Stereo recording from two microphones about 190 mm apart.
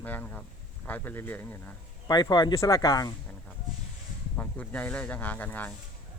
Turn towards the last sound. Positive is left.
turn(degrees=10)  # may be behind; listen again after turning